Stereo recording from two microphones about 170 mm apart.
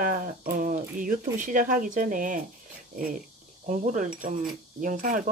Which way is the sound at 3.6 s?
45° right (ahead or behind).